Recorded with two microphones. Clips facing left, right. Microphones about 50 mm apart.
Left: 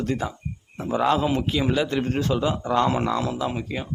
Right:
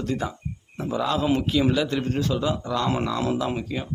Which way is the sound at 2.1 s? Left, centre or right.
Left.